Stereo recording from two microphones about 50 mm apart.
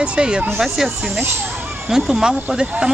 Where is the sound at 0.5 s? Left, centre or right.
Centre.